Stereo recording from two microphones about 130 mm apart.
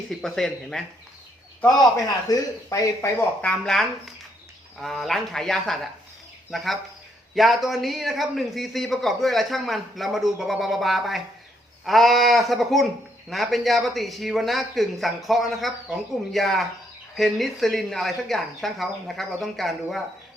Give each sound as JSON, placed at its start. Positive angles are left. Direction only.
{"t": 0.1, "sound": "speech", "side_deg": 0}
{"t": 2.0, "sound": "speech", "side_deg": 30}
{"t": 3.4, "sound": "speech", "side_deg": 10}